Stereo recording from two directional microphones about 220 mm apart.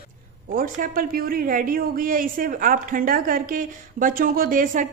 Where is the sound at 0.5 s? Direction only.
40° right (ahead or behind).